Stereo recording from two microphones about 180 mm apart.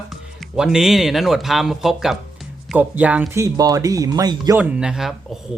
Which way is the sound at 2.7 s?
10° right (ahead or behind).